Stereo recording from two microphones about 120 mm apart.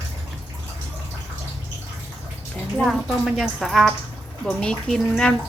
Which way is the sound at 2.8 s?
Centre (ahead or behind).